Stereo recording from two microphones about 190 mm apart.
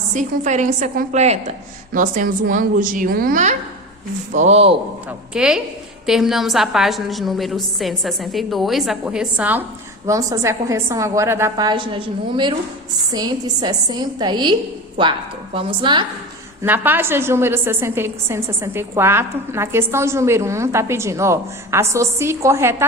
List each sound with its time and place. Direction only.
0.1 s a woman's voice: 40° right (ahead or behind)
5.3 s a woman's voice: 5° right (ahead or behind); by 14.5 s 25° right (ahead or behind)
15.5 s a woman's voice: 25° right (ahead or behind)
16.6 s a woman's voice: 10° right (ahead or behind)